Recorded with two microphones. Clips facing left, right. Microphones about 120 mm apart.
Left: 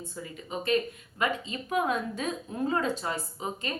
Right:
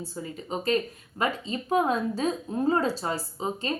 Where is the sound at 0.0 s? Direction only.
35° right (ahead or behind).